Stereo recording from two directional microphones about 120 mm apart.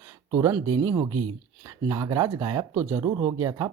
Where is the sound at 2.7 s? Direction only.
20° right (ahead or behind).